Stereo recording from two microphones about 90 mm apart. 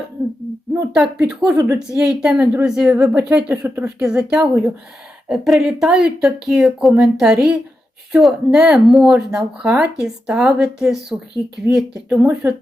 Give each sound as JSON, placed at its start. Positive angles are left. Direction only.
{"t": 0.9, "sound": "speech", "side_deg": -10}
{"t": 3.2, "sound": "speech", "side_deg": -25}
{"t": 4.0, "sound": "speech", "side_deg": -5}
{"t": 11.7, "sound": "speech", "side_deg": -30}
{"t": 12.0, "sound": "speech", "side_deg": -15}